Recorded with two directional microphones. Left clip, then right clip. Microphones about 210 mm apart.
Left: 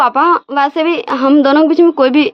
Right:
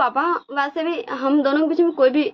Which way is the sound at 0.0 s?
55° left (ahead or behind).